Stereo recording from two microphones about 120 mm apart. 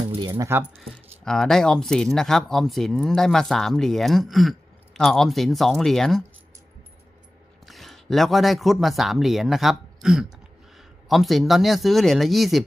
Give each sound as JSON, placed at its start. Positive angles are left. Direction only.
{"t": 0.3, "sound": "speech", "side_deg": -20}
{"t": 0.7, "sound": "speech", "side_deg": 5}
{"t": 7.6, "sound": "speech", "side_deg": 0}